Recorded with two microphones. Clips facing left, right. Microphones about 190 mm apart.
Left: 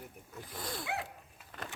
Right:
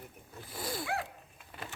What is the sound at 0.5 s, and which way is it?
Wild animals, 5° right (ahead or behind).